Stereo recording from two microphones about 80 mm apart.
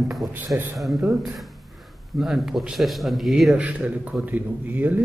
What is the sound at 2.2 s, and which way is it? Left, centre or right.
Speech, centre.